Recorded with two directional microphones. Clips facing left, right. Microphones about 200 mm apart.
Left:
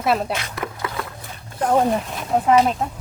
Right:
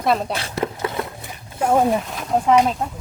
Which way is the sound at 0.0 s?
5° left (ahead or behind).